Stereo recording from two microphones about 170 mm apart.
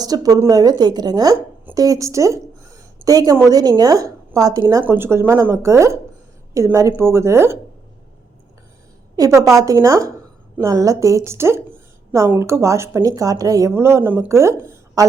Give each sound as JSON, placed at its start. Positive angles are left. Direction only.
{"t": 0.0, "sound": "a woman's voice", "side_deg": -20}
{"t": 9.1, "sound": "a woman's voice", "side_deg": -20}